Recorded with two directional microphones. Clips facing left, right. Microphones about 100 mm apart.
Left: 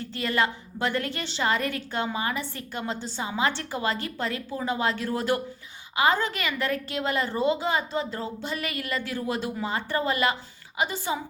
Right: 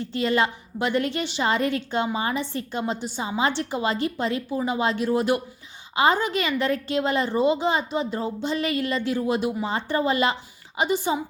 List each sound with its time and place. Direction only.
0.0 s a woman's voice: 20° right (ahead or behind)